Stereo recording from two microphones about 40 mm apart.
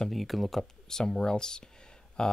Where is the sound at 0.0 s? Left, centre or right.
Centre.